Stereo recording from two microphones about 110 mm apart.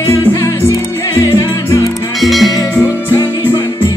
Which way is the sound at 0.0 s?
25° left (ahead or behind).